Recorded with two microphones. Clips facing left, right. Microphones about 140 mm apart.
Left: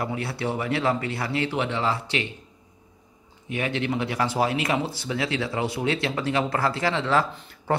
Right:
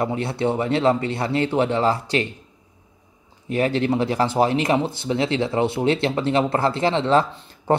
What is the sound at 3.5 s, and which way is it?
A man's voice, 35° right (ahead or behind).